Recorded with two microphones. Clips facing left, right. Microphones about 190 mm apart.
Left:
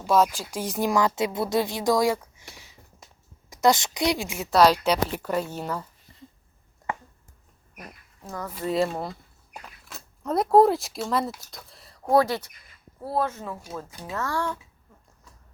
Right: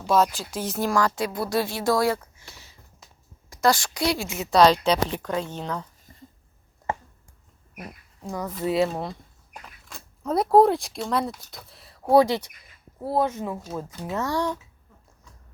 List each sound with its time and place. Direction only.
0.0 s speech: 10° left (ahead or behind)
7.8 s a sound: 10° right (ahead or behind)
8.6 s speech: 5° right (ahead or behind)